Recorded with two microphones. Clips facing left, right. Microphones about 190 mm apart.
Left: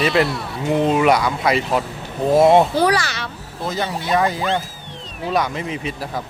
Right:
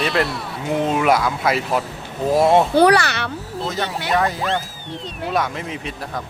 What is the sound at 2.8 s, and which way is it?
Speech, 65° right (ahead or behind).